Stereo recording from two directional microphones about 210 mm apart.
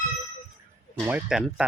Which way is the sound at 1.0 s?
5° right (ahead or behind).